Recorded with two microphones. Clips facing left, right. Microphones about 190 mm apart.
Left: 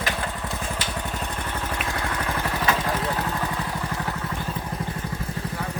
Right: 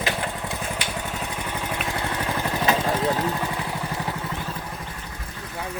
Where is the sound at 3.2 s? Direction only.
15° right (ahead or behind).